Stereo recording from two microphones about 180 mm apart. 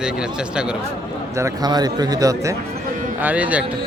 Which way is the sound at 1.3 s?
20° right (ahead or behind).